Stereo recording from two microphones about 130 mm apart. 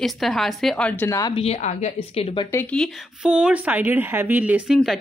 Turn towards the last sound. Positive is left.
turn(degrees=-10)  # may be behind; listen again after turning